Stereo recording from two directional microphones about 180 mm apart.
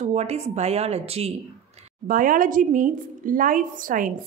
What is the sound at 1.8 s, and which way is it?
A woman's voice, 50° right (ahead or behind).